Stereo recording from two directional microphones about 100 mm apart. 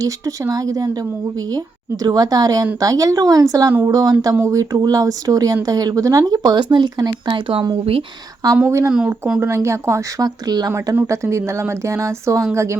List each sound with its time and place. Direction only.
0.0 s speech: 35° right (ahead or behind)
2.0 s speech: 40° right (ahead or behind)
8.6 s speech: 30° right (ahead or behind)
10.9 s speech: 30° right (ahead or behind)